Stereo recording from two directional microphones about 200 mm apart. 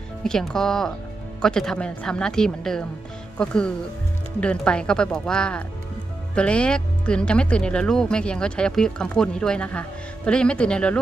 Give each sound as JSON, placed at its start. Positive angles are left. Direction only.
{"t": 0.3, "sound": "speech", "side_deg": 5}